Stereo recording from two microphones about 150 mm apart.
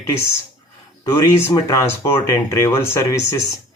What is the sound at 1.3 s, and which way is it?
Speech, 20° left (ahead or behind).